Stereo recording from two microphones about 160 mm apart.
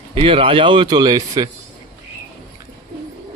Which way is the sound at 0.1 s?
35° right (ahead or behind).